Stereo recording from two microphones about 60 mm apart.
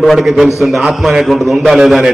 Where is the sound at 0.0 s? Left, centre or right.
Centre.